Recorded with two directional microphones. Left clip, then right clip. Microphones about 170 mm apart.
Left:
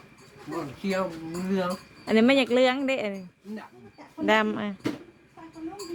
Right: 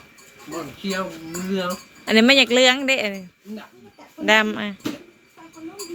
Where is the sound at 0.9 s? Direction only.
10° left (ahead or behind).